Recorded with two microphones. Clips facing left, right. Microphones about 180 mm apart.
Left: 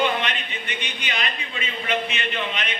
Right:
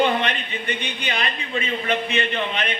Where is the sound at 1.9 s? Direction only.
55° right (ahead or behind).